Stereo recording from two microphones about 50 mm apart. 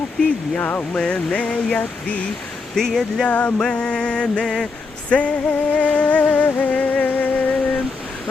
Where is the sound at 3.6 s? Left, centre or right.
Left.